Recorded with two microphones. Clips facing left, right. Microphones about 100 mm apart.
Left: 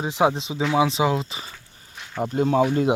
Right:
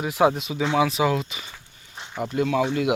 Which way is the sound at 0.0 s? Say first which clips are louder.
Right 1 dB; 25° left (ahead or behind).